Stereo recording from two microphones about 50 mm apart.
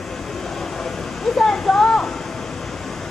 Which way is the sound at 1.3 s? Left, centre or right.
Centre.